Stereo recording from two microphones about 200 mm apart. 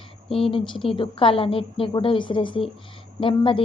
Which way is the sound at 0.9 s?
25° left (ahead or behind).